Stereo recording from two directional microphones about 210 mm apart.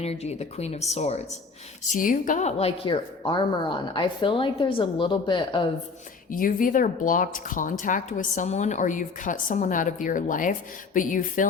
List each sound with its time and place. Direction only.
0.0 s a woman's voice: 30° left (ahead or behind)
6.3 s a woman's voice: 40° left (ahead or behind)